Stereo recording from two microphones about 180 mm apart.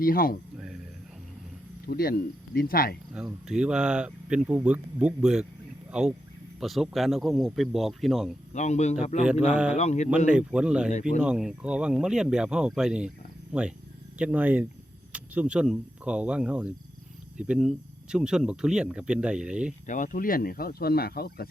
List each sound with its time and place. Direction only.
0.0 s speech: 55° left (ahead or behind)
1.9 s speech: 55° left (ahead or behind)
3.1 s speech: 5° right (ahead or behind)
8.5 s speech: 40° left (ahead or behind)
9.2 s speech: 5° right (ahead or behind)
9.7 s speech: 40° left (ahead or behind)
10.2 s speech: 5° right (ahead or behind)
19.9 s speech: 45° left (ahead or behind)